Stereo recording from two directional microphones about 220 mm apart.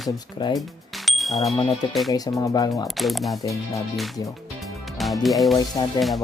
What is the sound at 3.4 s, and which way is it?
Speech, 15° left (ahead or behind).